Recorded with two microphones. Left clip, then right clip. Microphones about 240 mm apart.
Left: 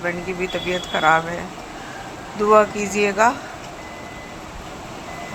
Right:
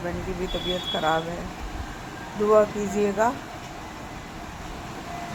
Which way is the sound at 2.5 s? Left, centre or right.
Centre.